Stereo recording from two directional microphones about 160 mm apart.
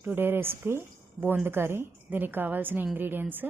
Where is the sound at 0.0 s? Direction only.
15° right (ahead or behind).